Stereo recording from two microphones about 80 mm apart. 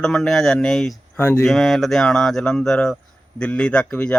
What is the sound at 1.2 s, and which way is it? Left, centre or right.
Speech, left.